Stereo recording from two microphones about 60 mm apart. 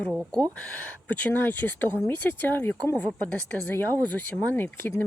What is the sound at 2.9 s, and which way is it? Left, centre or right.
Speech, centre.